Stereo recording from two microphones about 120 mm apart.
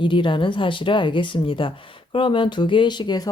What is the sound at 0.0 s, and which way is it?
Speech, 45° left (ahead or behind).